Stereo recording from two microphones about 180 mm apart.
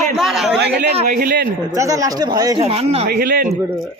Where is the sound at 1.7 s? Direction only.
15° right (ahead or behind).